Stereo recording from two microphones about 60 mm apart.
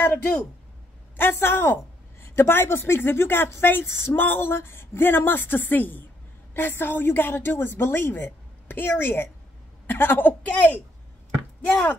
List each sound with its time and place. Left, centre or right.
0.0 s a woman's voice: left